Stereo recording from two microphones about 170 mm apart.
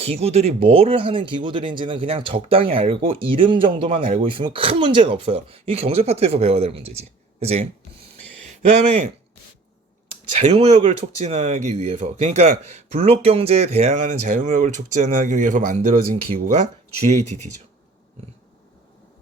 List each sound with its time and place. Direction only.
0.0 s speech: 35° right (ahead or behind)
10.3 s speech: 40° right (ahead or behind)